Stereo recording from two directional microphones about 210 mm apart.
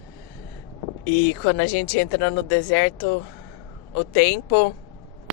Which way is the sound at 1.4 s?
55° left (ahead or behind).